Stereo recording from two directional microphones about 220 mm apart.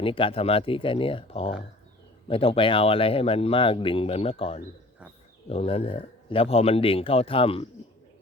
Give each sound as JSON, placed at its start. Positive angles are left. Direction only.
{"t": 0.0, "sound": "speech", "side_deg": 25}